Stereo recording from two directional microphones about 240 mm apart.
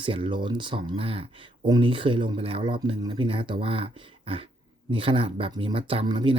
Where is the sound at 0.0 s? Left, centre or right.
Right.